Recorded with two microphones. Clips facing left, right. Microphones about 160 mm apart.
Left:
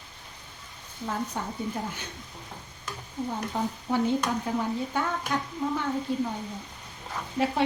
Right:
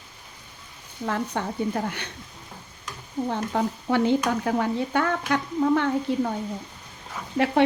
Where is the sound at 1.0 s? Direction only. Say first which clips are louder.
Right 4 dB; 70° right (ahead or behind).